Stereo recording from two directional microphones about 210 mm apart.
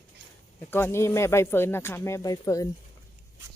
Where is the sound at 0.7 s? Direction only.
10° left (ahead or behind).